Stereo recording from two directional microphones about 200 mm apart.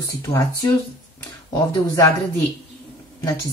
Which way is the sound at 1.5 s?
15° left (ahead or behind).